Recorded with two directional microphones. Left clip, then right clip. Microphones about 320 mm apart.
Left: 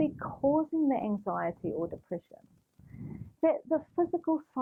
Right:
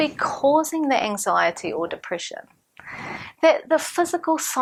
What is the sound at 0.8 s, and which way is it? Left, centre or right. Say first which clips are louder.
Speech: right 10 dB; centre.